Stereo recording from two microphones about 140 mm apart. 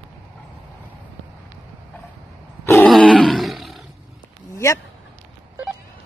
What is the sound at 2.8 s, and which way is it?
Roar, 5° left (ahead or behind).